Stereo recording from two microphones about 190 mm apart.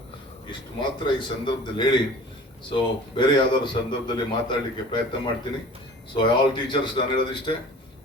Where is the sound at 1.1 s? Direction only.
25° left (ahead or behind).